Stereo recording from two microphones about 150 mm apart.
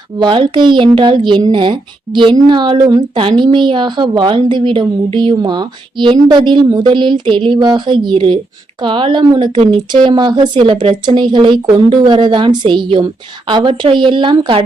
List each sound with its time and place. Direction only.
0.2 s a woman's voice: 30° right (ahead or behind)